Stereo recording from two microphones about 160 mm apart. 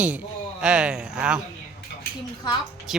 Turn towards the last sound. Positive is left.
turn(degrees=0)  # may be behind; listen again after turning